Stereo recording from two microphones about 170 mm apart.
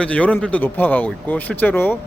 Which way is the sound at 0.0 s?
5° left (ahead or behind).